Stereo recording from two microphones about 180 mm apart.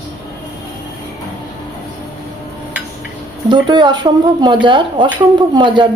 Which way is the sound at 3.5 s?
25° right (ahead or behind).